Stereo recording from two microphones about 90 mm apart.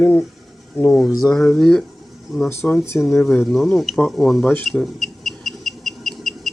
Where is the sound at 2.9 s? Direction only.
10° left (ahead or behind).